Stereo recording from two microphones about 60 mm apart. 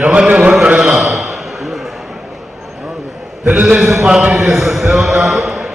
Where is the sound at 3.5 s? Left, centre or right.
Centre.